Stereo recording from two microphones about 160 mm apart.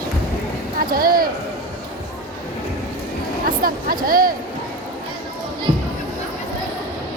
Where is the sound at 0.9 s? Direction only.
65° right (ahead or behind).